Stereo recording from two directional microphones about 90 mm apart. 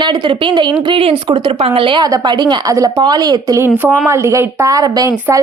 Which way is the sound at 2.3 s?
50° right (ahead or behind).